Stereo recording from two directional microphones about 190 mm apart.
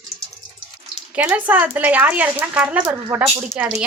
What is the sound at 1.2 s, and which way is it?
Speech, 10° right (ahead or behind).